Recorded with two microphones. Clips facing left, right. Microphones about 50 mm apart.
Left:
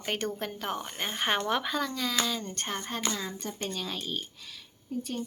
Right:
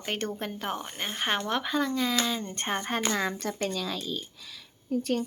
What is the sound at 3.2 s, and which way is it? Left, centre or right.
Speech, right.